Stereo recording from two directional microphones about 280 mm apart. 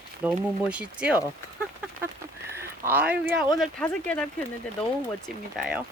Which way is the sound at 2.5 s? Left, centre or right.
Centre.